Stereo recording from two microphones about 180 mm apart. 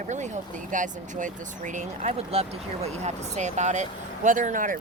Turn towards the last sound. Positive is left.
turn(degrees=-50)  # may be behind; listen again after turning